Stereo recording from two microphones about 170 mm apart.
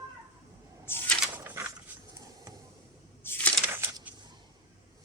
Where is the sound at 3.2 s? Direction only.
10° left (ahead or behind).